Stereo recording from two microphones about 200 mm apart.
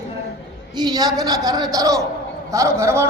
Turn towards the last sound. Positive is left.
turn(degrees=-15)  # may be behind; listen again after turning